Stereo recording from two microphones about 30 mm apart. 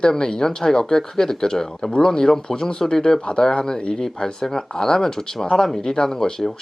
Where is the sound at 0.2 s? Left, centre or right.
Left.